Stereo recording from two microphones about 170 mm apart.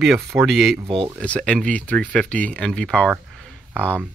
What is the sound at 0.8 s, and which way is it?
Speech, 30° right (ahead or behind).